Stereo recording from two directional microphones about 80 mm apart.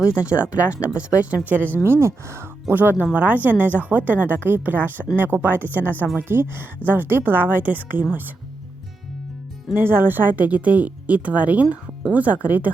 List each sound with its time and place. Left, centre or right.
0.0 s speech: centre
1.8 s speech: right
9.7 s speech: right